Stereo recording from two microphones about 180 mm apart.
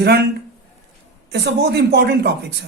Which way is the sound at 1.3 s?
65° right (ahead or behind).